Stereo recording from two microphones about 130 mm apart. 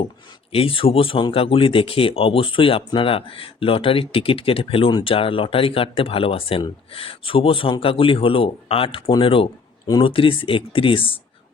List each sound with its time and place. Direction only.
0.5 s speech: 45° left (ahead or behind)